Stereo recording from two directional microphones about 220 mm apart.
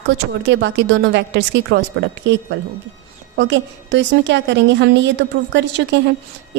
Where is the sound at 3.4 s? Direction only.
55° right (ahead or behind).